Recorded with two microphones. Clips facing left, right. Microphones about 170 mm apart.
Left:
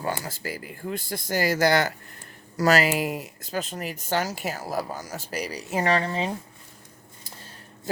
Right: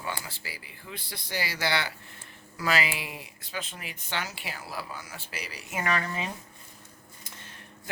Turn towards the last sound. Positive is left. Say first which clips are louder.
# left 6 dB
turn(degrees=30)  # may be behind; listen again after turning